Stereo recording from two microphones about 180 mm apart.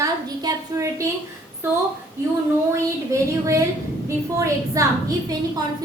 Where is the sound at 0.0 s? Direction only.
15° right (ahead or behind).